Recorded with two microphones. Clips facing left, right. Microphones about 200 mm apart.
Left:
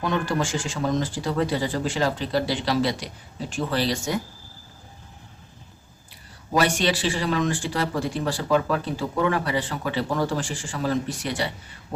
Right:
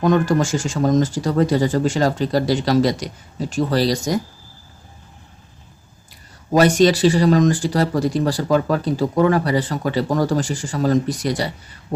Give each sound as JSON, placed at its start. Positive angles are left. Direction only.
{"t": 0.0, "sound": "speech", "side_deg": -45}
{"t": 6.5, "sound": "speech", "side_deg": -40}